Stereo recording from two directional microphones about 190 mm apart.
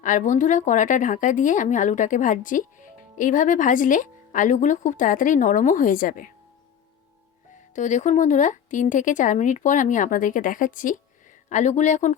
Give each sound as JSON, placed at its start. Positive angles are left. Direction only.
{"t": 0.0, "sound": "a woman's voice", "side_deg": 40}
{"t": 7.8, "sound": "speech", "side_deg": 40}